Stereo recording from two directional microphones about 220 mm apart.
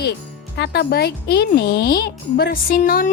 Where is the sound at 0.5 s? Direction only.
50° left (ahead or behind).